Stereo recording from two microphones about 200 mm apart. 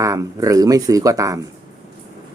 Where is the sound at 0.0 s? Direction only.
15° right (ahead or behind).